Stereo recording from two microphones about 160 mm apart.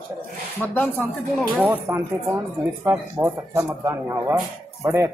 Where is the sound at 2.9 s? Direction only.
20° right (ahead or behind).